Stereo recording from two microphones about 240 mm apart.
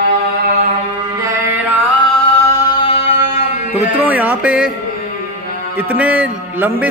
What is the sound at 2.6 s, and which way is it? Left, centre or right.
Music, left.